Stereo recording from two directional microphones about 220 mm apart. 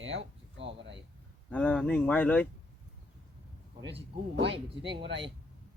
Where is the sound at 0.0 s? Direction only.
60° right (ahead or behind).